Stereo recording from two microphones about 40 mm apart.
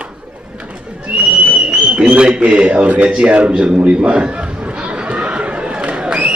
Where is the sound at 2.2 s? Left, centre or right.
Right.